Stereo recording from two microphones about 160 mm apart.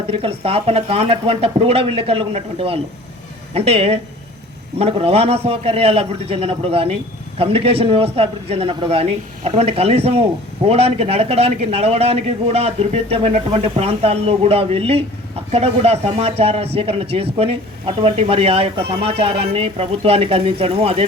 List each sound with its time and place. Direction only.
0.1 s a man's voice: 35° right (ahead or behind)